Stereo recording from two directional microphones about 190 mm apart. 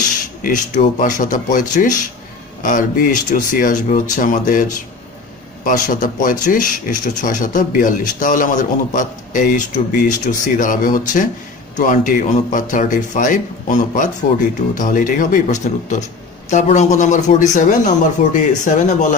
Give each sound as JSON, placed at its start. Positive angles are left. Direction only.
{"t": 0.0, "sound": "a man's voice", "side_deg": 45}